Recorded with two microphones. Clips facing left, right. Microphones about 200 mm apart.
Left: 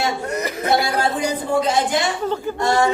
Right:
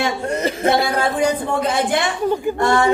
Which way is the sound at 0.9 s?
60° right (ahead or behind).